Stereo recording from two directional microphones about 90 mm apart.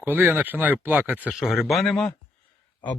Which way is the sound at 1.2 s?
5° right (ahead or behind).